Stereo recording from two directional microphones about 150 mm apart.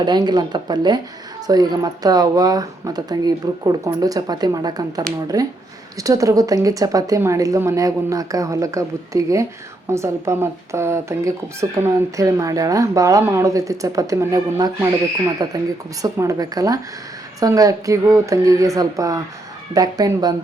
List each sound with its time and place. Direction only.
0.0 s speech: 30° right (ahead or behind)